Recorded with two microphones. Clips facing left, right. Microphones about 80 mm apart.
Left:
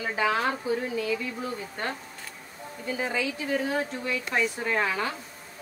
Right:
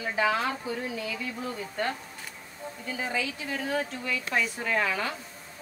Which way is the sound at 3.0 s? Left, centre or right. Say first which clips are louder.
Left 2 dB; left.